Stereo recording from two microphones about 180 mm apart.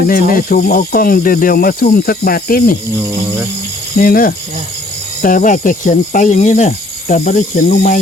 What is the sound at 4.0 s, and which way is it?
Speech, 55° left (ahead or behind).